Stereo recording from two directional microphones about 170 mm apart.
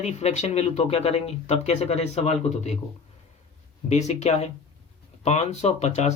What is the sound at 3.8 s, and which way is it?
Speech, 40° left (ahead or behind).